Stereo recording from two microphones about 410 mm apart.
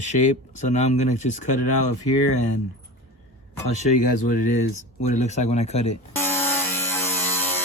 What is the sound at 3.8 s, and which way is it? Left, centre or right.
Speech, centre.